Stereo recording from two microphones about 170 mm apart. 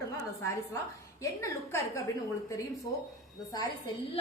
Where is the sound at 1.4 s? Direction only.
20° left (ahead or behind).